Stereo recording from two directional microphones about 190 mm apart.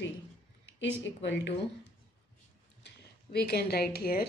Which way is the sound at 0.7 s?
70° left (ahead or behind).